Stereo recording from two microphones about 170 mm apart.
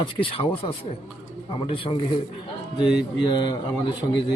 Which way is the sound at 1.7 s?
30° left (ahead or behind).